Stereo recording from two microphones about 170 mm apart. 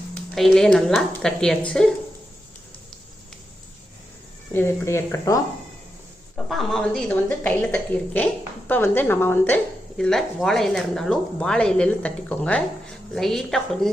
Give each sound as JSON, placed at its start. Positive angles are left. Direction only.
{"t": 0.1, "sound": "speech", "side_deg": 5}
{"t": 4.5, "sound": "a woman's voice", "side_deg": 15}
{"t": 6.3, "sound": "a woman's voice", "side_deg": 0}